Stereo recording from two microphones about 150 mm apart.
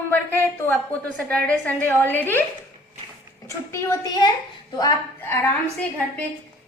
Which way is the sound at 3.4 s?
20° left (ahead or behind).